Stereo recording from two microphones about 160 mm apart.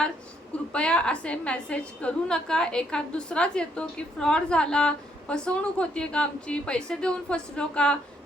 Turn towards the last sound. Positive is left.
turn(degrees=5)  # may be behind; listen again after turning